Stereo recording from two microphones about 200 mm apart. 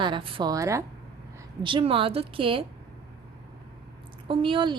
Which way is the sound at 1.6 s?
25° right (ahead or behind).